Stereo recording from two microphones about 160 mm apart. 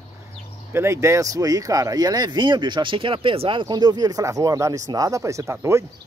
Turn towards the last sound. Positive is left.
turn(degrees=-15)  # may be behind; listen again after turning